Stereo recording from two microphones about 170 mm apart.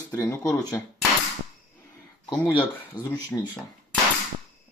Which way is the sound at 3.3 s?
15° left (ahead or behind).